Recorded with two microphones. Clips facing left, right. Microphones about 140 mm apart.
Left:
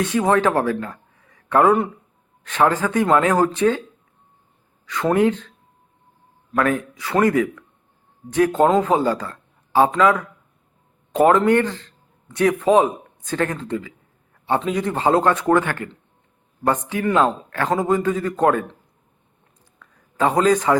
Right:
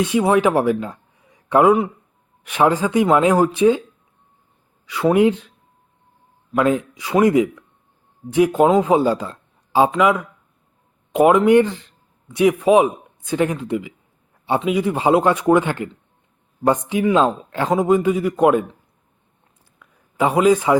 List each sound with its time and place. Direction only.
0.0 s a man's voice: 10° right (ahead or behind)
4.9 s a man's voice: 10° right (ahead or behind)
6.5 s a man's voice: 15° right (ahead or behind)
19.8 s a sound: 10° right (ahead or behind)